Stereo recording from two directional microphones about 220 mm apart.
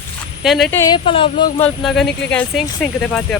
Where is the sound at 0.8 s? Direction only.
20° left (ahead or behind).